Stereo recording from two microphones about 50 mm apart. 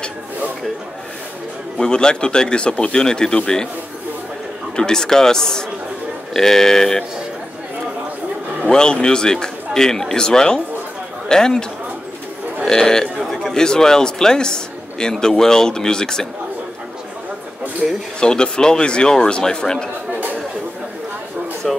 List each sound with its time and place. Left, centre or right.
1.8 s a man's voice: centre
4.7 s a man's voice: centre
8.6 s a man's voice: centre
12.6 s a man's voice: centre
18.2 s a man's voice: centre
21.6 s a sound: centre